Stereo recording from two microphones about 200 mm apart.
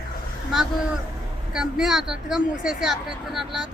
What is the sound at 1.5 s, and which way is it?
Speech, centre (ahead or behind).